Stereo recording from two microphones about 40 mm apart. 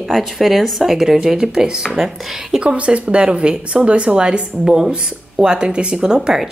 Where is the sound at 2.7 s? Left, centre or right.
Right.